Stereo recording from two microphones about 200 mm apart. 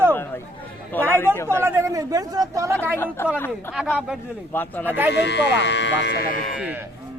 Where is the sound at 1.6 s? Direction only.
15° right (ahead or behind).